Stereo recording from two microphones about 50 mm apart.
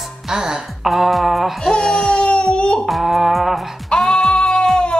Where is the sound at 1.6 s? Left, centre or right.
Centre.